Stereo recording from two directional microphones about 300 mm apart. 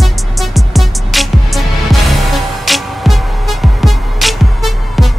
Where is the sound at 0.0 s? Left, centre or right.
Centre.